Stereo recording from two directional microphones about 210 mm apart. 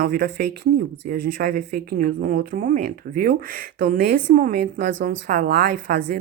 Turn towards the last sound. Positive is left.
turn(degrees=-45)  # may be behind; listen again after turning